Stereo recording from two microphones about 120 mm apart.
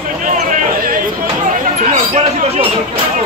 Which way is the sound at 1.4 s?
75° right (ahead or behind).